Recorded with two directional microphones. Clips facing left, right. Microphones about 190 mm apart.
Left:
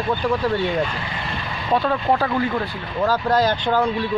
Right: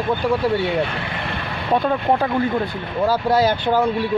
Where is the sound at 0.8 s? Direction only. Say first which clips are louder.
Right 1 dB; 65° right (ahead or behind).